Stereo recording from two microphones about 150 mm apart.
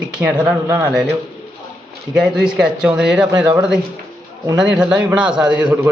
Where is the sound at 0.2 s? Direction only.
5° right (ahead or behind).